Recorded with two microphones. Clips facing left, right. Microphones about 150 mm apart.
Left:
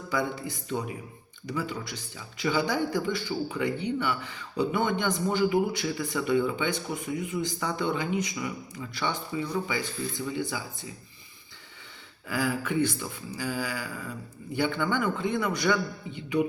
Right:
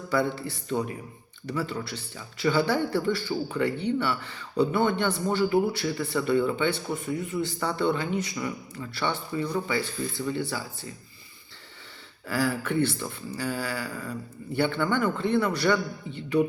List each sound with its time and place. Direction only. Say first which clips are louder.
0.3 s a man's voice: right 2 dB; 15° left (ahead or behind)
12.5 s a man's voice: left 1 dB; 10° left (ahead or behind)